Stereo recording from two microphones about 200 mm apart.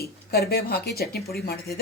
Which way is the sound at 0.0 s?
50° left (ahead or behind).